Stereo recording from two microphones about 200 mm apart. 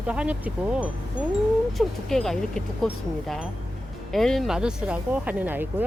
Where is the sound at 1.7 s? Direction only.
Centre (ahead or behind).